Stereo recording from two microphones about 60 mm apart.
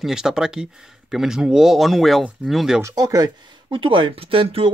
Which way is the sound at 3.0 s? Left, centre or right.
Right.